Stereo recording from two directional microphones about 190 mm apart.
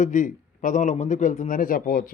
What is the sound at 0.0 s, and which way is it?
A man's voice, 40° left (ahead or behind).